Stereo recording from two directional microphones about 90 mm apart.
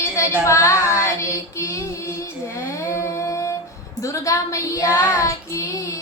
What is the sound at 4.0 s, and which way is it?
Child singing, 35° left (ahead or behind).